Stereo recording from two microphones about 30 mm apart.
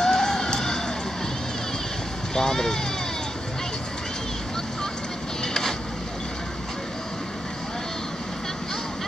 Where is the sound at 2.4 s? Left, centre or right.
Centre.